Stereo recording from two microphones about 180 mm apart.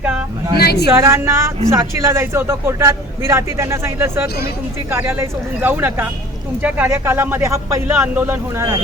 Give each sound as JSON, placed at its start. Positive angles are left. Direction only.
{"t": 0.5, "sound": "a woman's voice", "side_deg": 60}
{"t": 0.9, "sound": "speech", "side_deg": -15}